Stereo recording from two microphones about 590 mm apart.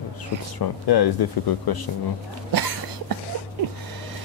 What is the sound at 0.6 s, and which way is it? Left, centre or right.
Speech, left.